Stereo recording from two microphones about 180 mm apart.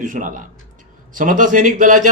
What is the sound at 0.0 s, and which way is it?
Speech, 45° right (ahead or behind).